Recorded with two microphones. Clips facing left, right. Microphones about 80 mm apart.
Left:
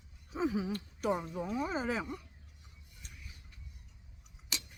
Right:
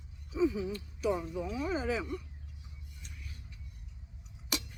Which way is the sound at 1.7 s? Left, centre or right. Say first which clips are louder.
Right 2 dB; left.